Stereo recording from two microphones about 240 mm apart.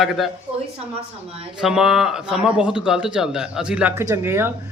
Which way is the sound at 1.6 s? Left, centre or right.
Centre.